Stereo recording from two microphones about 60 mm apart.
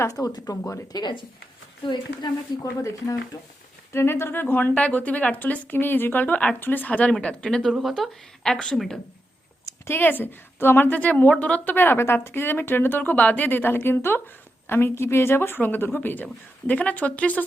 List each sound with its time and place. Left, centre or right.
0.2 s speech: left
0.9 s speech: left
2.6 s speech: left
3.9 s a woman's voice: left
7.1 s speech: centre
7.7 s speech: centre
9.9 s a woman's voice: left